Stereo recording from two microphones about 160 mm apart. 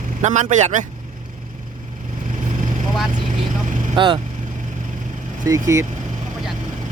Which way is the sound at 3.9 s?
30° right (ahead or behind).